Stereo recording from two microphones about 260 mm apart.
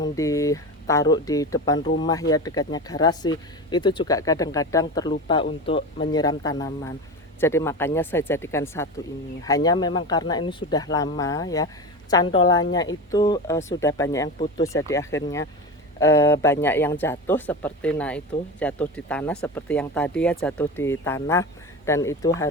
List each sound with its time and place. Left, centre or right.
0.0 s speech: centre